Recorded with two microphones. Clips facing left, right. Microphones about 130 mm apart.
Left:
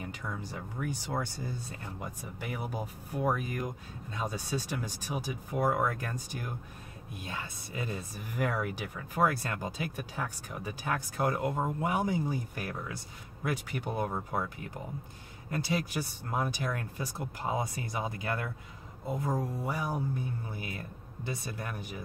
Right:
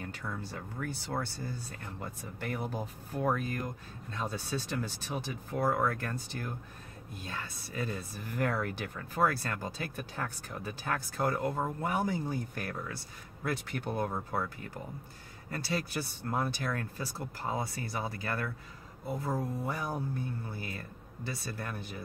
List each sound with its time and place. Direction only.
0.0 s speech: 15° left (ahead or behind)